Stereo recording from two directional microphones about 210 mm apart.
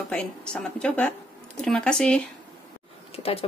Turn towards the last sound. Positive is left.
turn(degrees=30)  # may be behind; listen again after turning